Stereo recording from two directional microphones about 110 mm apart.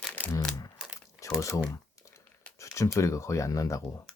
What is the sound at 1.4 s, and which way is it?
Speech, 25° left (ahead or behind).